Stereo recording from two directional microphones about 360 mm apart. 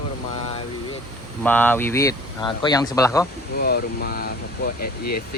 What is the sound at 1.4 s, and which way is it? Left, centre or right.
Speech, centre.